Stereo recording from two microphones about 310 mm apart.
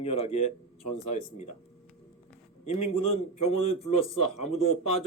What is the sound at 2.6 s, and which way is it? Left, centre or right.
Speech, left.